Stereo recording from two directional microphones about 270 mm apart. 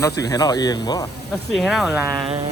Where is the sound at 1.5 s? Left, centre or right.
Centre.